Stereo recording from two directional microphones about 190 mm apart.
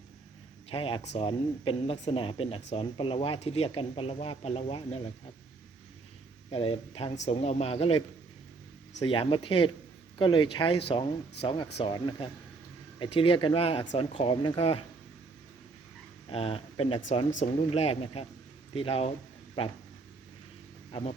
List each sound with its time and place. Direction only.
0.7 s speech: 30° left (ahead or behind)
6.5 s speech: 30° left (ahead or behind)
9.0 s speech: 30° left (ahead or behind)
16.3 s speech: 30° left (ahead or behind)